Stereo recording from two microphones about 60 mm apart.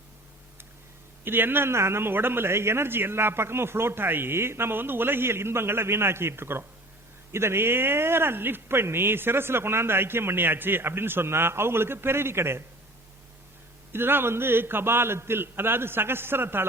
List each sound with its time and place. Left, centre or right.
1.2 s a man's voice: right
13.9 s speech: right